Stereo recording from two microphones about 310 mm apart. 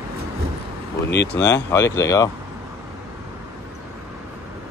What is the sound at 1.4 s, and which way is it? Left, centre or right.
Speech, left.